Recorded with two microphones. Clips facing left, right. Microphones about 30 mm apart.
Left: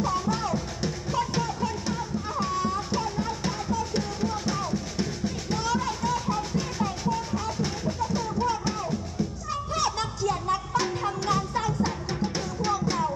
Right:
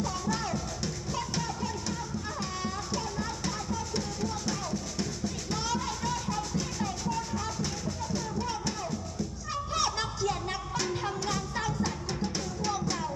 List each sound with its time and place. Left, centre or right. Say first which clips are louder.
0.0 s music: left 5 dB; left
9.8 s music: left 2 dB; centre
10.8 s music: left 4 dB; centre